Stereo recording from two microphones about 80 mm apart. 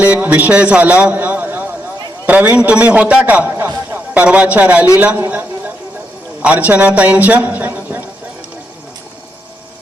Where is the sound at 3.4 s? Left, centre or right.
Right.